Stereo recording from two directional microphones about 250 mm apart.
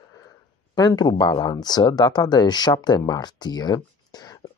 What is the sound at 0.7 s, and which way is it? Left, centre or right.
Speech, centre.